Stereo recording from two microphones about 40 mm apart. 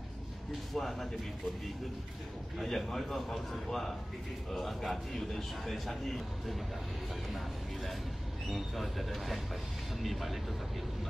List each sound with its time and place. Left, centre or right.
0.5 s speech: centre
2.6 s speech: centre
8.5 s speech: centre